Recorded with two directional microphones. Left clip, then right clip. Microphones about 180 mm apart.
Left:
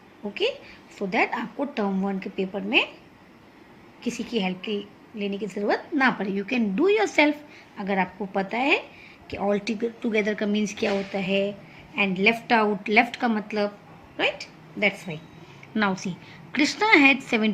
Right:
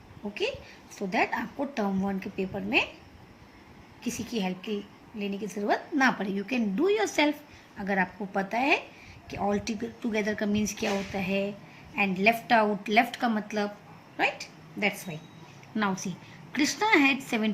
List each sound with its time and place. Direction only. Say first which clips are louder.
0.9 s a woman's voice: left 3 dB; 10° left (ahead or behind)
4.0 s a woman's voice: left 5 dB; 15° left (ahead or behind)